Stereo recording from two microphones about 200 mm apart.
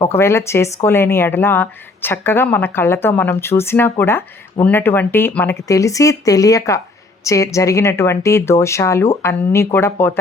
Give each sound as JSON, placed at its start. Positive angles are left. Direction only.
{"t": 0.0, "sound": "speech", "side_deg": 10}